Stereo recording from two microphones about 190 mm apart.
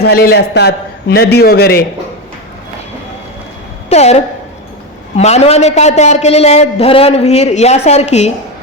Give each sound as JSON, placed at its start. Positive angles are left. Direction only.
{"t": 0.0, "sound": "a man's voice", "side_deg": 55}
{"t": 3.8, "sound": "a woman's voice", "side_deg": 35}